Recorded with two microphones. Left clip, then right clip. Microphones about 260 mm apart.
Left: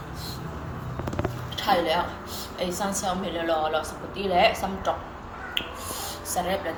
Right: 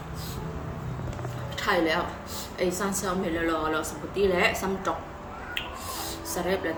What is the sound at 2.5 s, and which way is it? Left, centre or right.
A woman's voice, centre.